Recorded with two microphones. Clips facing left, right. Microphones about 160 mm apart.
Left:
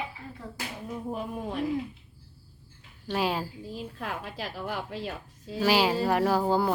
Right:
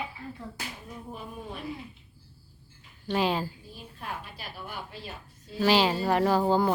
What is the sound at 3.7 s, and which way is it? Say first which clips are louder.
A woman's voice: left 4 dB; 90° left.